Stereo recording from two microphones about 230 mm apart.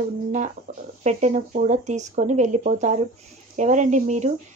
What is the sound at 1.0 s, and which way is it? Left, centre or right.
Speech, right.